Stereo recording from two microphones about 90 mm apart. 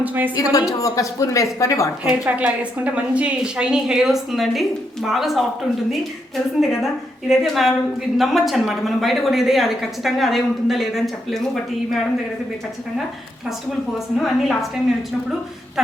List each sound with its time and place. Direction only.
0.0 s a woman's voice: 20° right (ahead or behind)
0.3 s a woman's voice: 40° left (ahead or behind)
2.0 s a woman's voice: 10° right (ahead or behind)
6.6 s a woman's voice: centre (ahead or behind)
14.2 s a woman's voice: centre (ahead or behind)